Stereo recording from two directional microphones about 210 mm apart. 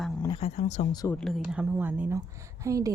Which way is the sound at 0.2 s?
25° left (ahead or behind).